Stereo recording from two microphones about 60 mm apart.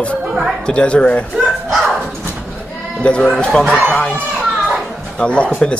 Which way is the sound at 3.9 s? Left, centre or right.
Left.